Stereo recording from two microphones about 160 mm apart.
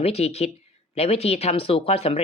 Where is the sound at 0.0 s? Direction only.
40° left (ahead or behind).